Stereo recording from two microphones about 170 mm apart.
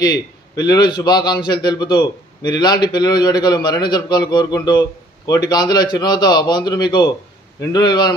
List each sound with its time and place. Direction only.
0.0 s a man's voice: 25° left (ahead or behind)